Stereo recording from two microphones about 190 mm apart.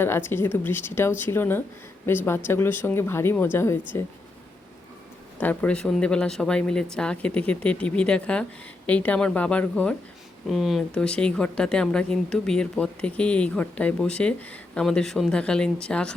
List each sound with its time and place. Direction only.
0.0 s speech: 10° left (ahead or behind)
5.4 s speech: 10° left (ahead or behind)